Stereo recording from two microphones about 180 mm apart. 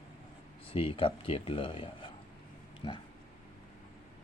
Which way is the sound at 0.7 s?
30° left (ahead or behind).